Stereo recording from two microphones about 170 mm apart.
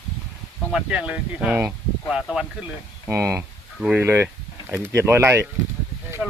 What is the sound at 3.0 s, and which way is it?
Speech, 15° right (ahead or behind).